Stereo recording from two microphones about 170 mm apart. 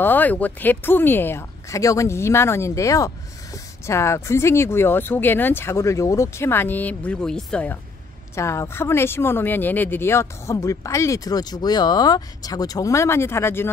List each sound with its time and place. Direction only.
0.0 s speech: 10° left (ahead or behind)